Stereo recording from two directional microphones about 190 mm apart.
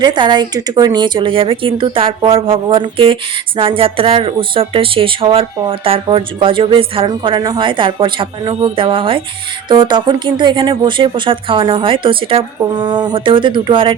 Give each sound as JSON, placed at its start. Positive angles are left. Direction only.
{"t": 0.0, "sound": "speech", "side_deg": -25}